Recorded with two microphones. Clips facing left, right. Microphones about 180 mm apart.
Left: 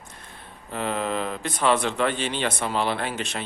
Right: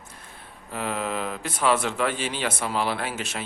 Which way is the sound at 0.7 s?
5° right (ahead or behind).